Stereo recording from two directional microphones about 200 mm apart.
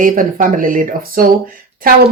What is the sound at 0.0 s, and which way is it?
Speech, 45° right (ahead or behind).